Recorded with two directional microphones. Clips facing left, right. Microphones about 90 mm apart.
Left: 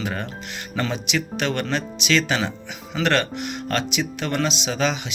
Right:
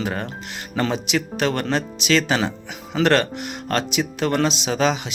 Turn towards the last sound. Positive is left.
turn(degrees=-35)  # may be behind; listen again after turning